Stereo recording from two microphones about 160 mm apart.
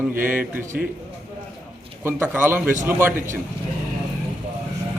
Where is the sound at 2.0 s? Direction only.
10° right (ahead or behind).